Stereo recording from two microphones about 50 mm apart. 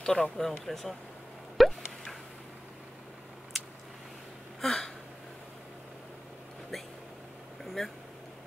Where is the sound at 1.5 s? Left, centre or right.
Centre.